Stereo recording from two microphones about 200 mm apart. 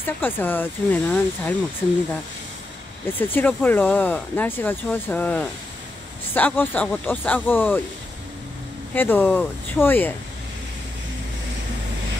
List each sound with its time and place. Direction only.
0.2 s speech: 10° left (ahead or behind)
3.2 s speech: 10° left (ahead or behind)
8.9 s speech: 10° left (ahead or behind)